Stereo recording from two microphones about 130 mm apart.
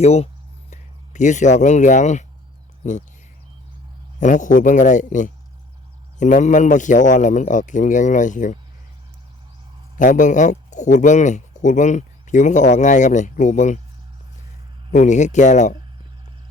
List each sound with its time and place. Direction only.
0.0 s speech: 55° left (ahead or behind)
0.7 s speech: 70° left (ahead or behind)
4.2 s speech: 80° left
10.0 s speech: 75° left (ahead or behind)
14.8 s speech: 70° left (ahead or behind)